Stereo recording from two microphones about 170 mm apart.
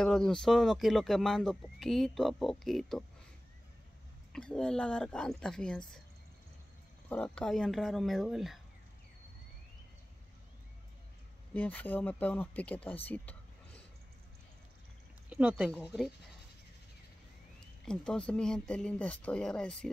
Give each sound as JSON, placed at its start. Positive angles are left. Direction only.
{"t": 0.0, "sound": "speech", "side_deg": 5}
{"t": 4.3, "sound": "speech", "side_deg": 5}
{"t": 7.1, "sound": "speech", "side_deg": 10}
{"t": 11.5, "sound": "speech", "side_deg": 10}
{"t": 15.2, "sound": "speech", "side_deg": -5}
{"t": 17.8, "sound": "speech", "side_deg": 5}